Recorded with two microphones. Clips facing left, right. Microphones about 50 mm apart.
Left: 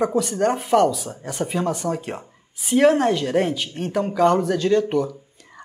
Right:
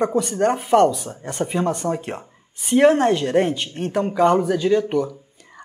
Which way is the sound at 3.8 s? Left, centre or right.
Centre.